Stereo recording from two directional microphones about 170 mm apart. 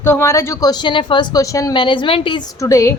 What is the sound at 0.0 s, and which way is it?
Speech, 15° left (ahead or behind).